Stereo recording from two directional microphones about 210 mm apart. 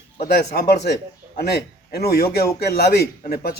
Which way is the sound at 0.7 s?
50° left (ahead or behind).